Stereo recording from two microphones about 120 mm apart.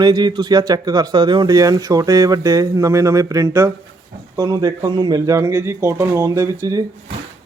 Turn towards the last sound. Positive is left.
turn(degrees=-30)  # may be behind; listen again after turning